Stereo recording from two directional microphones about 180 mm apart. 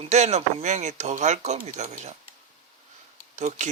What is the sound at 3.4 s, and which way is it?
Speech, 40° right (ahead or behind).